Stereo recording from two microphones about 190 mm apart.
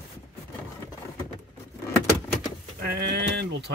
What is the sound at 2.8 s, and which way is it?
Speech, 55° right (ahead or behind).